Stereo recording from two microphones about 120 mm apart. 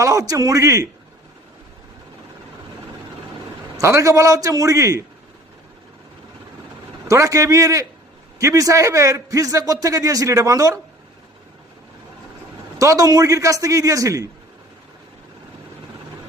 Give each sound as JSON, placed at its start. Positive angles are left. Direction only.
{"t": 0.0, "sound": "a man's voice", "side_deg": -30}
{"t": 3.8, "sound": "a man's voice", "side_deg": -25}
{"t": 7.1, "sound": "a man's voice", "side_deg": -25}
{"t": 12.8, "sound": "a man's voice", "side_deg": -30}